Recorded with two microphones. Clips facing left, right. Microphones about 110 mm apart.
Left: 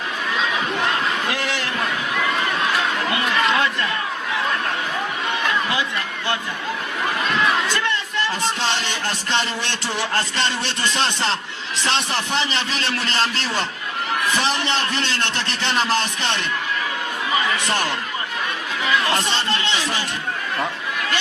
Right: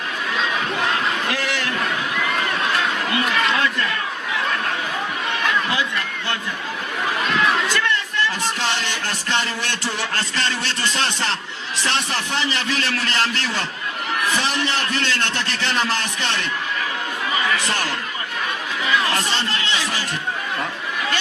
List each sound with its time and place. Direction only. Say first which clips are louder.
1.3 s a sound: even; 20° left (ahead or behind)
8.6 s music: left 1 dB; 20° left (ahead or behind)
17.7 s music: left 2 dB; 20° left (ahead or behind)
19.1 s music: left 1 dB; 25° left (ahead or behind)